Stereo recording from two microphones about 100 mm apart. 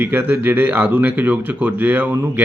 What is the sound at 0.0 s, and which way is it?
Speech, 20° right (ahead or behind).